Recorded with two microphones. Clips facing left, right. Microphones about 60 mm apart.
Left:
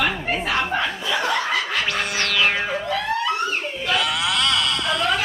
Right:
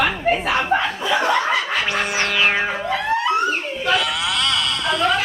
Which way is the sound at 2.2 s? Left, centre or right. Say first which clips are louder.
Right 1 dB; centre.